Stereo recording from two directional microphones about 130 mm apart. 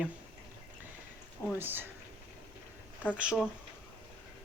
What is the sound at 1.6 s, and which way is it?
Speech, 15° right (ahead or behind).